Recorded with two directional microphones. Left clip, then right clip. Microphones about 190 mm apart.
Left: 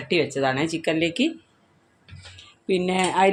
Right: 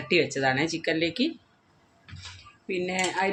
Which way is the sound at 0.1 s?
20° left (ahead or behind).